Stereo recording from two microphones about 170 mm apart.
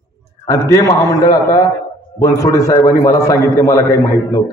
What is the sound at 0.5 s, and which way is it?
A man's voice, 20° left (ahead or behind).